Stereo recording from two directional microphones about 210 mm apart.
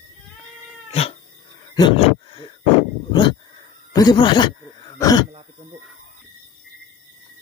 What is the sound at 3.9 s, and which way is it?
Speech, 20° left (ahead or behind).